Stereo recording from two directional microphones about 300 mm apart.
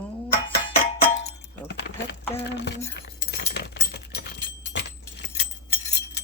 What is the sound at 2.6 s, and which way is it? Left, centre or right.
Keys jangling, left.